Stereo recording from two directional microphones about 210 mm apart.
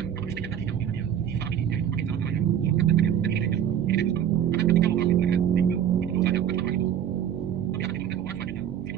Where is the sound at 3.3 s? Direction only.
55° right (ahead or behind).